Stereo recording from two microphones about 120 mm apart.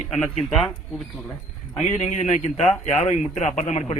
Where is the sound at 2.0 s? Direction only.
75° left (ahead or behind).